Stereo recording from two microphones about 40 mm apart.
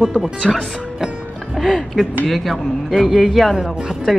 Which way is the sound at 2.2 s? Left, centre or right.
Centre.